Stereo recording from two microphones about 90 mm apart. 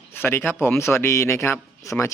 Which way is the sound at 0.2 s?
20° left (ahead or behind).